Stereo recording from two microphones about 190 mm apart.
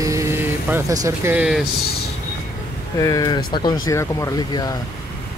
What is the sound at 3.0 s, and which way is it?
Speech, 20° left (ahead or behind).